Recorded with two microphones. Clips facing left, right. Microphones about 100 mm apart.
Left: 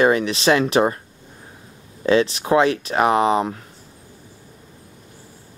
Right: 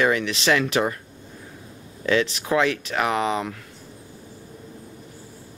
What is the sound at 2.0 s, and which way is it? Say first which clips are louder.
Speech: left 5 dB; 30° left (ahead or behind).